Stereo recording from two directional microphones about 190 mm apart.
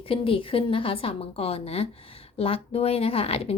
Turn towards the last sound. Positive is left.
turn(degrees=30)  # may be behind; listen again after turning